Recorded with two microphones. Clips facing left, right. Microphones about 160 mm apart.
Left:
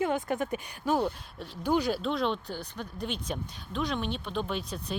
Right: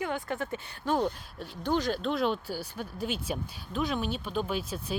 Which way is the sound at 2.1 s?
5° right (ahead or behind).